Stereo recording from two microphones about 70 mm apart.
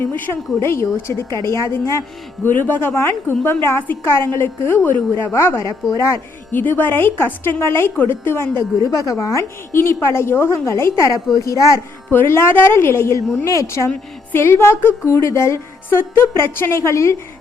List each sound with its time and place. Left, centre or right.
0.0 s a woman's voice: left
2.4 s a woman's voice: left
6.5 s a woman's voice: left
8.8 s a woman's voice: left
12.1 s a woman's voice: left
14.3 s a woman's voice: left